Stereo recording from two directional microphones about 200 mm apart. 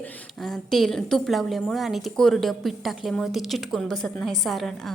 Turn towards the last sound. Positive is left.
turn(degrees=0)  # may be behind; listen again after turning